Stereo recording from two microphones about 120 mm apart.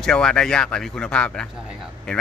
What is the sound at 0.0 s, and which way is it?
A man's voice, 5° left (ahead or behind).